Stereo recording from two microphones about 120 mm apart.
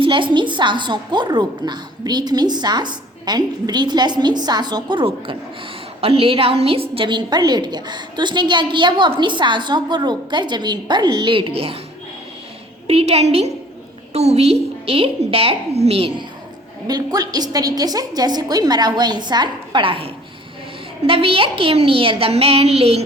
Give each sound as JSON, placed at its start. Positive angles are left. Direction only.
{"t": 0.0, "sound": "a woman's voice", "side_deg": -45}
{"t": 12.9, "sound": "a woman's voice", "side_deg": -60}
{"t": 16.8, "sound": "a woman's voice", "side_deg": -35}